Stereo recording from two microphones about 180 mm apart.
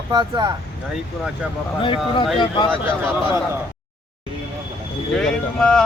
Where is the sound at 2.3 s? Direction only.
25° left (ahead or behind).